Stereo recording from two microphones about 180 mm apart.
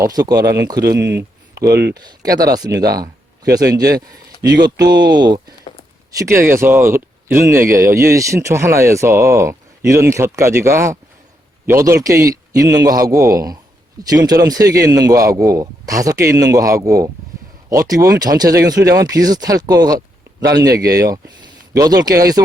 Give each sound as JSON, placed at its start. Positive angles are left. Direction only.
{"t": 0.1, "sound": "a man's voice", "side_deg": -20}
{"t": 0.9, "sound": "a sound", "side_deg": -70}
{"t": 1.7, "sound": "speech", "side_deg": -65}
{"t": 2.0, "sound": "a man's voice", "side_deg": -20}